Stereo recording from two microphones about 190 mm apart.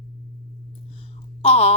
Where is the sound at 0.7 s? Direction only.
30° left (ahead or behind).